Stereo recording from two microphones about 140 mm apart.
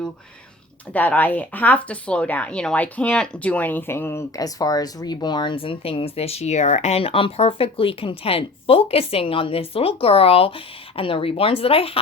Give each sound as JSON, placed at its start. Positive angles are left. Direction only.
{"t": 0.9, "sound": "speech", "side_deg": 10}